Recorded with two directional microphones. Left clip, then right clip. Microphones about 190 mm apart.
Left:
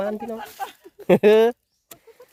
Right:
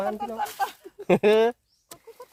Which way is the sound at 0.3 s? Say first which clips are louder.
Right 5 dB; 15° right (ahead or behind).